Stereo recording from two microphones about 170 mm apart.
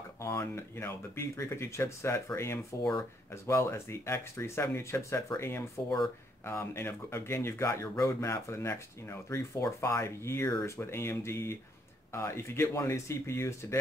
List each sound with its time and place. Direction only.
0.2 s speech: 15° left (ahead or behind)